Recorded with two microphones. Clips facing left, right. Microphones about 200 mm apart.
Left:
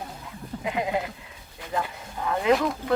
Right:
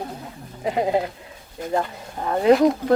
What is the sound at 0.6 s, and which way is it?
Speech, 35° right (ahead or behind).